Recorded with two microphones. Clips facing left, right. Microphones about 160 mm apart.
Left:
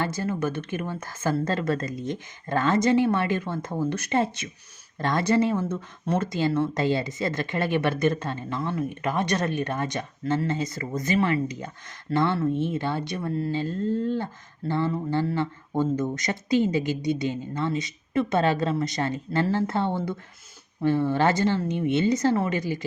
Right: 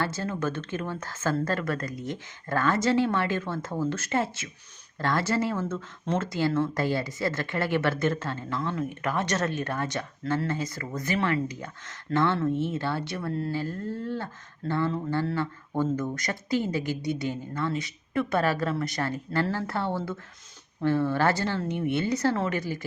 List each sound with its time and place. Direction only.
0.0 s speech: 10° left (ahead or behind)